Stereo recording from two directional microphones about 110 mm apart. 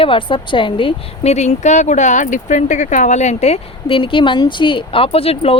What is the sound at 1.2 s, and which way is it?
Speech, 85° left.